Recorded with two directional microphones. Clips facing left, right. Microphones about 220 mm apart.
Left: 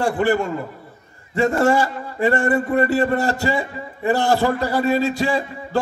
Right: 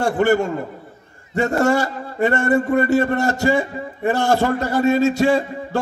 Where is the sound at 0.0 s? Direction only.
45° right (ahead or behind).